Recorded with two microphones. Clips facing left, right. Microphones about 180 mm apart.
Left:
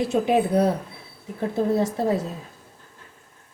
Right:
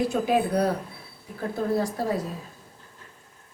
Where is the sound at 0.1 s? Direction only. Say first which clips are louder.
Left 3 dB; 25° left (ahead or behind).